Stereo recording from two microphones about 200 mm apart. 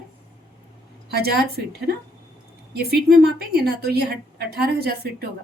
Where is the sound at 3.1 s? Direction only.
50° right (ahead or behind).